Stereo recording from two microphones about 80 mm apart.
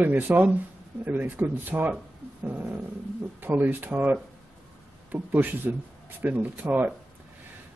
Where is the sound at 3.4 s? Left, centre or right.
Right.